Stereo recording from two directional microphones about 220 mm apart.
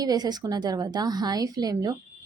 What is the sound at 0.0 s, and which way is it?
A woman's voice, 20° right (ahead or behind).